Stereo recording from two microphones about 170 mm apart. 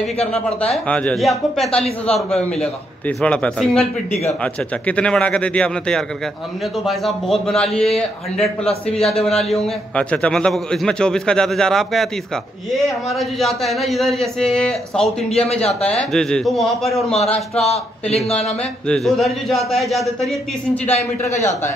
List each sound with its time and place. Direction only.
0.8 s a man's voice: 5° left (ahead or behind)
4.1 s speech: 40° left (ahead or behind)
4.4 s a man's voice: 5° left (ahead or behind)
17.1 s a man's voice: 40° left (ahead or behind)
18.9 s a man's voice: centre (ahead or behind)